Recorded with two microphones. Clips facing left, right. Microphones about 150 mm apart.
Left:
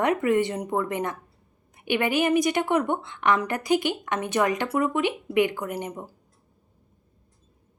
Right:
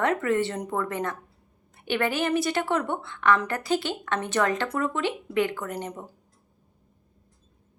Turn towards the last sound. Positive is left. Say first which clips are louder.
# left 2 dB
turn(degrees=10)  # may be behind; listen again after turning